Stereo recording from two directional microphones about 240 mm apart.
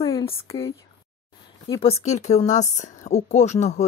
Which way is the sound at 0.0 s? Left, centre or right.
Left.